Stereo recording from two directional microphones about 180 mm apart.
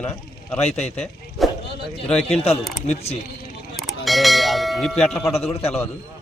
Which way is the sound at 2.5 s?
35° left (ahead or behind).